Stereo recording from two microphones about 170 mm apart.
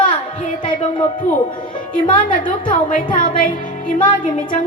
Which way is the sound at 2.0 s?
30° left (ahead or behind).